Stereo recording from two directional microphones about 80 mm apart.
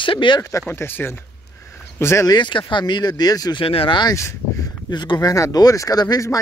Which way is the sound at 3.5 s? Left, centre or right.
Left.